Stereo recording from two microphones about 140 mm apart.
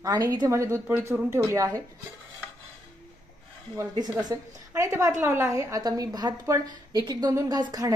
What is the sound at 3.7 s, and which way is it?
A woman's voice, 30° right (ahead or behind).